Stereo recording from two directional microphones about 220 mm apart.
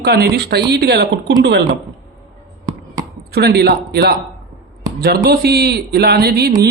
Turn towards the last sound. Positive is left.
turn(degrees=-45)  # may be behind; listen again after turning